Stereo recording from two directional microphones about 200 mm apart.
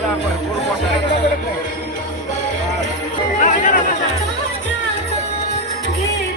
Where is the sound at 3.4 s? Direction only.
40° left (ahead or behind).